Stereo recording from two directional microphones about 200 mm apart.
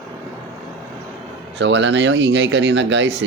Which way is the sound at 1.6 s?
65° right (ahead or behind).